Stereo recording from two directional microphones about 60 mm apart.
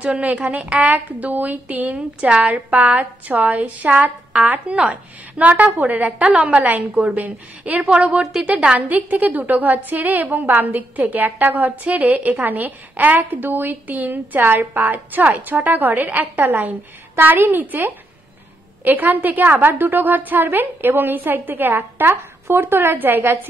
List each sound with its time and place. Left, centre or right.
0.0 s a woman's voice: right
2.0 s a woman's voice: centre; by 23.5 s right